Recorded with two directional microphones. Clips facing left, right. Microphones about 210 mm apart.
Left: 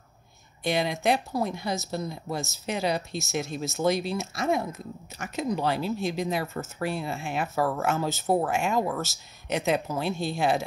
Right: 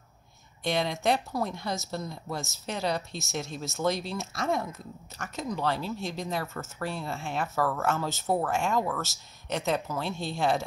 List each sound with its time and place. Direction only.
0.7 s speech: 5° left (ahead or behind)
6.4 s speech: 25° left (ahead or behind)
6.8 s speech: 10° left (ahead or behind)